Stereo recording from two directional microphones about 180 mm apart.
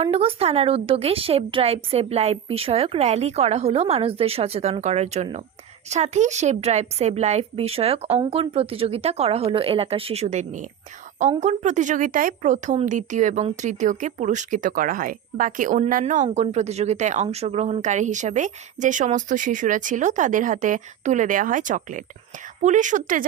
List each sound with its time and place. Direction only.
0.0 s a woman's voice: 30° right (ahead or behind)